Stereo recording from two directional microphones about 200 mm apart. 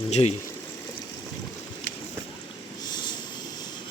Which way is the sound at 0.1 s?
35° left (ahead or behind).